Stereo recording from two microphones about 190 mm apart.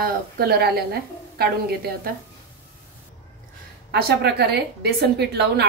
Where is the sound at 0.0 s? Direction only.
55° right (ahead or behind).